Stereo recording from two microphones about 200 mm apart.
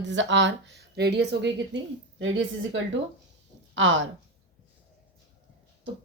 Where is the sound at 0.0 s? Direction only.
65° right (ahead or behind).